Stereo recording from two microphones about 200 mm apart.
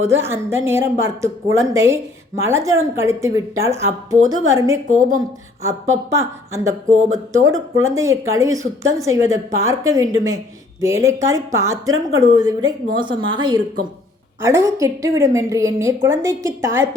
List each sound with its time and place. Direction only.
0.0 s speech: 10° right (ahead or behind)
4.9 s a woman's voice: 40° right (ahead or behind)
5.9 s speech: 15° right (ahead or behind)